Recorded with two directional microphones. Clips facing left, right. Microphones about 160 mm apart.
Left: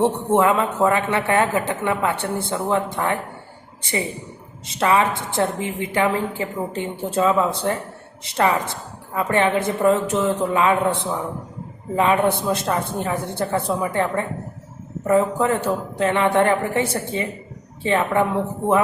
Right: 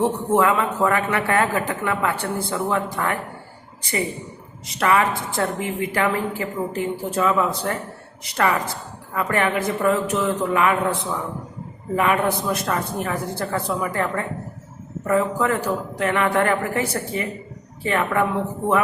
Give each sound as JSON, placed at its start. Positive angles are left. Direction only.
{"t": 0.0, "sound": "a woman's voice", "side_deg": 25}
{"t": 4.6, "sound": "a woman's voice", "side_deg": 25}